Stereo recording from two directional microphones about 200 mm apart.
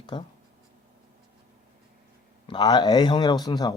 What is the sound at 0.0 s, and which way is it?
Speech, 20° left (ahead or behind).